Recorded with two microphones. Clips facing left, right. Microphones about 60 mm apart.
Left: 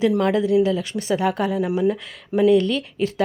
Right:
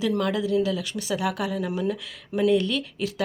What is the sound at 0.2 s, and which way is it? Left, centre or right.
Speech, left.